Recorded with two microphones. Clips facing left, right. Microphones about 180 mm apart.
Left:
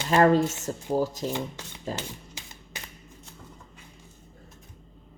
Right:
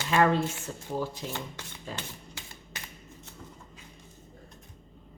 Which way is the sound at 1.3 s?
15° left (ahead or behind).